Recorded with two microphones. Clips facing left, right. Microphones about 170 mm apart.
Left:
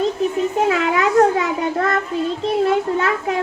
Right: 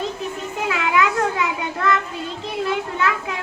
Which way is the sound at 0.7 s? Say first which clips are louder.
Left 4 dB; 40° left (ahead or behind).